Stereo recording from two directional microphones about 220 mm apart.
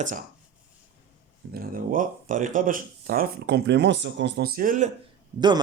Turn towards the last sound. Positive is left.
turn(degrees=-20)  # may be behind; listen again after turning